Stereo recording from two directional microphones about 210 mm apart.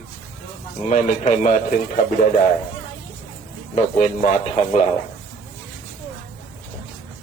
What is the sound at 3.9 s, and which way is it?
Speech, 35° left (ahead or behind).